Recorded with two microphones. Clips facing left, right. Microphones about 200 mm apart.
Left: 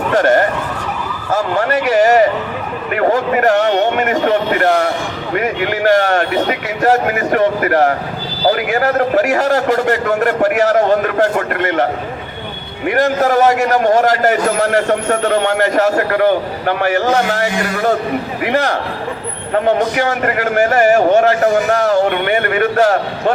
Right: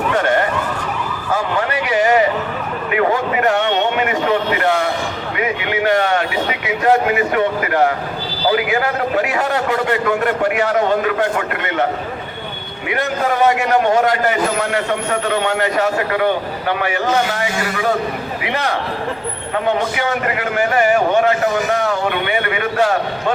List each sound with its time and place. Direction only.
0.1 s emergency vehicle: 40° left (ahead or behind)
1.5 s a sound: 45° left (ahead or behind)
8.5 s a man's voice: 45° left (ahead or behind)